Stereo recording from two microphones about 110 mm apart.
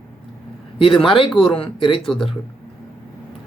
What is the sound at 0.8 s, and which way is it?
A man's voice, 50° left (ahead or behind).